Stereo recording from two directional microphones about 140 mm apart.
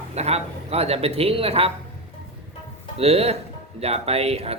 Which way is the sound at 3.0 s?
45° right (ahead or behind).